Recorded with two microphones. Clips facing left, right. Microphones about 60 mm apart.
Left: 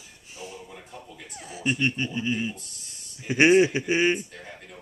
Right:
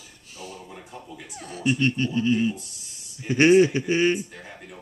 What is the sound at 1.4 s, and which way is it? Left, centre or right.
Speech, centre.